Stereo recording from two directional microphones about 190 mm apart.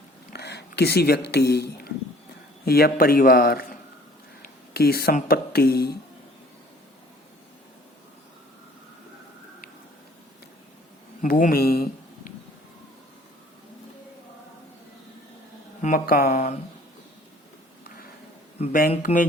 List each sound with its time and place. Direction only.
0.3 s a man's voice: 60° left (ahead or behind)
11.2 s speech: 45° left (ahead or behind)
15.8 s a man's voice: 45° left (ahead or behind)
18.6 s a man's voice: 45° left (ahead or behind)
19.1 s mantra: 30° left (ahead or behind)